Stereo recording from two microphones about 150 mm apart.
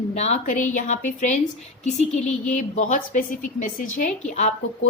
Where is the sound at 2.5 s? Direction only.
55° left (ahead or behind).